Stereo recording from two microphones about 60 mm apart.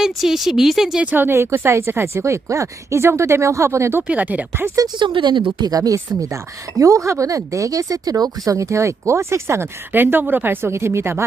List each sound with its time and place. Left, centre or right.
0.1 s speech: centre
1.0 s speech: right
1.4 s speech: right
4.0 s speech: right
5.5 s speech: right
9.9 s speech: right
10.7 s speech: right